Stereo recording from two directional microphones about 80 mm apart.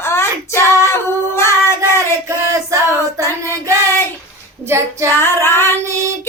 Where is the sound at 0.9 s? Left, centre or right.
Left.